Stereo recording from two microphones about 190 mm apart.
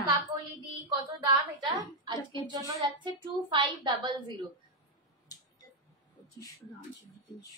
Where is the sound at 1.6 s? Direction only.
25° right (ahead or behind).